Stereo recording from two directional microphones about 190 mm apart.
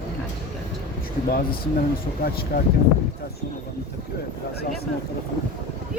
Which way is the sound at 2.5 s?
50° left (ahead or behind).